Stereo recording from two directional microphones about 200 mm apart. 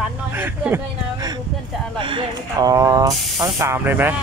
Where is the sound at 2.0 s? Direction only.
25° right (ahead or behind).